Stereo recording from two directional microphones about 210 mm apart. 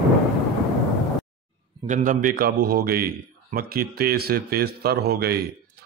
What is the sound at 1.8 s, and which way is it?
Speech, 35° right (ahead or behind).